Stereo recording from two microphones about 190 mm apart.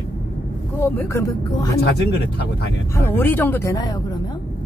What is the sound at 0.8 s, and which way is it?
Speech, 15° left (ahead or behind).